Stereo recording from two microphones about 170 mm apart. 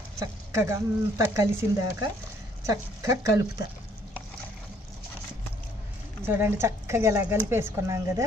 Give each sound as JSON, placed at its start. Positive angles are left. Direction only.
{"t": 0.2, "sound": "speech", "side_deg": -15}
{"t": 6.2, "sound": "speech", "side_deg": -15}